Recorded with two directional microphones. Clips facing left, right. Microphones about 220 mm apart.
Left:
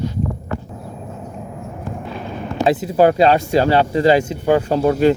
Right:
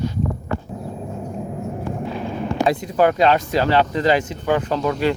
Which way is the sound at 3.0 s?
35° left (ahead or behind).